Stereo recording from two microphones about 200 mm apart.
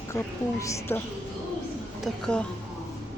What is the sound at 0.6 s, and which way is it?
Speech, 15° left (ahead or behind).